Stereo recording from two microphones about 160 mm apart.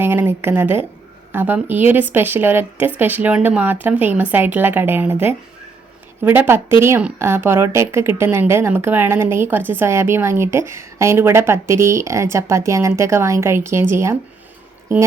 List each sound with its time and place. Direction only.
0.0 s speech: 10° right (ahead or behind)